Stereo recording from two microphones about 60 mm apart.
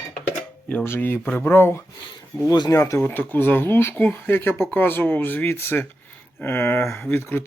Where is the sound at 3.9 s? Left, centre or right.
Left.